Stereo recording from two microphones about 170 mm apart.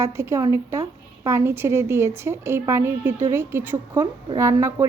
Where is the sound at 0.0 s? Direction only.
15° right (ahead or behind).